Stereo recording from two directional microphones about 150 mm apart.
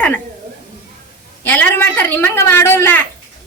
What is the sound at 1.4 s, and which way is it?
A woman's voice, 10° left (ahead or behind).